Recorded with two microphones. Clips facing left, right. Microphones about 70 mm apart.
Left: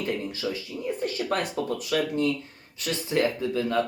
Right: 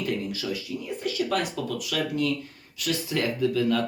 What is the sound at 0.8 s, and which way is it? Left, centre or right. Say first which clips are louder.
Speech: left 2 dB; left.